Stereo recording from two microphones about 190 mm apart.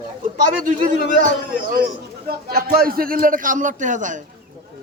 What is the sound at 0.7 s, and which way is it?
Speech, 45° right (ahead or behind).